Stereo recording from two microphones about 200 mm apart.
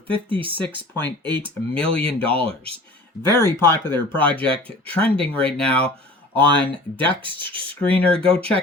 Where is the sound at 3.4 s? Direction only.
10° left (ahead or behind).